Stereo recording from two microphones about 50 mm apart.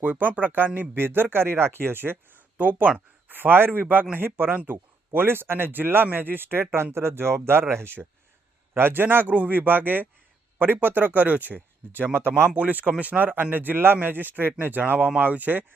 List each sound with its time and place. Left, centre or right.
0.0 s a man's voice: right
8.7 s speech: right
12.5 s speech: right